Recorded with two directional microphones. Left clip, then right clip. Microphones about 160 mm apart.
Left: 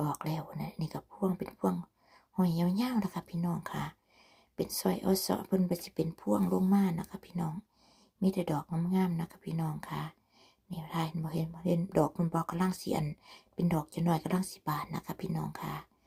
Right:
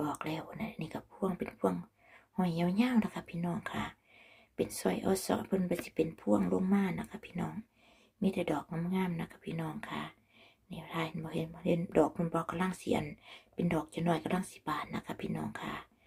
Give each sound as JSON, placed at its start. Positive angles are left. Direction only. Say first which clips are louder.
{"t": 0.0, "sound": "speech", "louder": "left 1 dB", "side_deg": 35}